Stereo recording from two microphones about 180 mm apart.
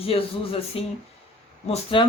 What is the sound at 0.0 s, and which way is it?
Speech, 30° left (ahead or behind).